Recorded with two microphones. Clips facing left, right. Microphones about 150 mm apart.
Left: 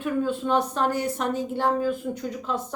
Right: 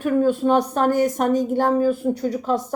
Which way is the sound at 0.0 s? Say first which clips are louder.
Right 7 dB; 45° right (ahead or behind).